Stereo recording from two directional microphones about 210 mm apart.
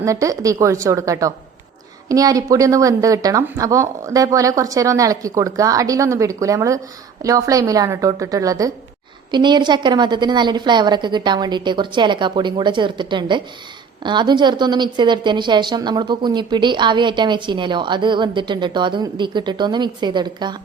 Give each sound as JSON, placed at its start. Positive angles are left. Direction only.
{"t": 0.0, "sound": "a woman's voice", "side_deg": -15}